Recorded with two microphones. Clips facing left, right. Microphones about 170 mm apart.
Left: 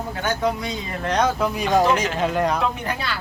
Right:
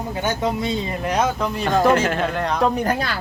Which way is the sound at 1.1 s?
Centre (ahead or behind).